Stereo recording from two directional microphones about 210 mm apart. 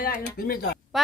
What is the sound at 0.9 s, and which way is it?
Speech, centre (ahead or behind).